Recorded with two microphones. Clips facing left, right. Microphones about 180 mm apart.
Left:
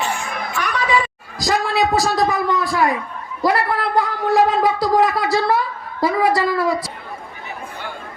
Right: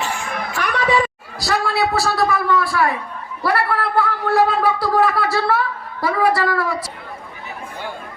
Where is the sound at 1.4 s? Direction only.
15° left (ahead or behind).